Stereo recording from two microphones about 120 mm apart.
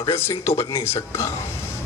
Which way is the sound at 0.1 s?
20° left (ahead or behind).